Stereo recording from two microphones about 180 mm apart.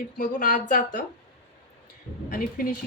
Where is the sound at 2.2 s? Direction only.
50° left (ahead or behind).